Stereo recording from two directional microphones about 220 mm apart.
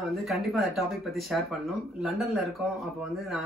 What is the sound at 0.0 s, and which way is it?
Speech, centre (ahead or behind).